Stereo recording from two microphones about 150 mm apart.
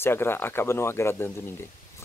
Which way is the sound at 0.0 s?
15° left (ahead or behind).